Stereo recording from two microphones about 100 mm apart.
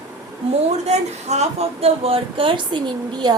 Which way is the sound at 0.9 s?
90° right.